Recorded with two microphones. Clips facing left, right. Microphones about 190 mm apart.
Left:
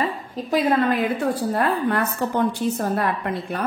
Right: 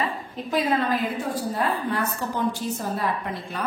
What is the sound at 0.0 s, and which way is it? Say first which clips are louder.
A woman's voice: left 3 dB; 45° left (ahead or behind).